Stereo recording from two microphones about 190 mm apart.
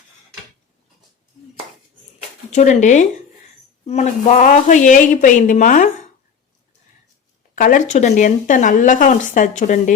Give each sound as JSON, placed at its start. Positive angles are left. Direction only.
{"t": 2.5, "sound": "speech", "side_deg": 40}
{"t": 7.5, "sound": "speech", "side_deg": 45}